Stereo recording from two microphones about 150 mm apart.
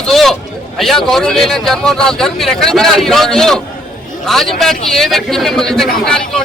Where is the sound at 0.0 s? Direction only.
Centre (ahead or behind).